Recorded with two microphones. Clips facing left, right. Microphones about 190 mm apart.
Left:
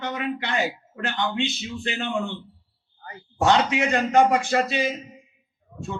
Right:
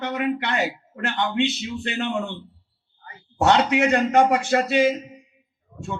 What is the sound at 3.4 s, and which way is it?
A man's voice, 60° right (ahead or behind).